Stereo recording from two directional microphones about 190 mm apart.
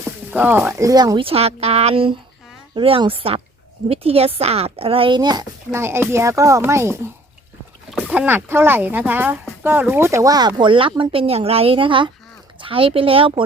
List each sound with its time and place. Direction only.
0.3 s speech: 10° right (ahead or behind)
7.9 s rowboat: 5° left (ahead or behind)
8.1 s speech: 10° right (ahead or behind); by 13.4 s 30° right (ahead or behind)